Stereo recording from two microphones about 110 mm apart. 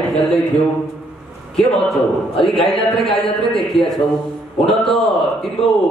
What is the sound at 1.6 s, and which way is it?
A man's voice, 5° left (ahead or behind).